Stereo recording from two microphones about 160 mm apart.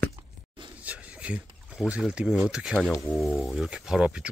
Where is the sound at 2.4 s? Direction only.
5° right (ahead or behind).